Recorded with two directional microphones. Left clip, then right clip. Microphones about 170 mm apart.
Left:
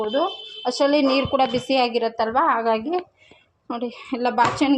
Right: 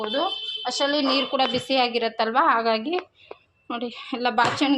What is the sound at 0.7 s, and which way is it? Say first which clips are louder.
A woman's voice: left 4 dB; 45° left (ahead or behind).